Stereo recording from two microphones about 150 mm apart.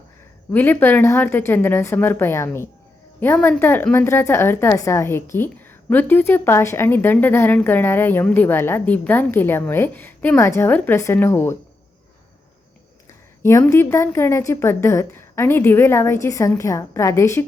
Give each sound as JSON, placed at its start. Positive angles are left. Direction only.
{"t": 0.5, "sound": "a woman's voice", "side_deg": 15}
{"t": 13.4, "sound": "a woman's voice", "side_deg": 20}